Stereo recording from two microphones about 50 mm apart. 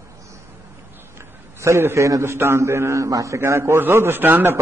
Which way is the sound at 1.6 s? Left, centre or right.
Right.